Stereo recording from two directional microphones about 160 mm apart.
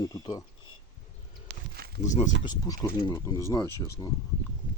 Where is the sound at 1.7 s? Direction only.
80° right.